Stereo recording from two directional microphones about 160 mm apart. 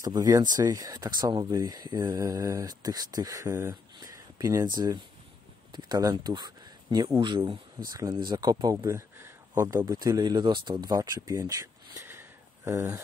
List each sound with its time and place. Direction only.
0.0 s speech: 25° right (ahead or behind)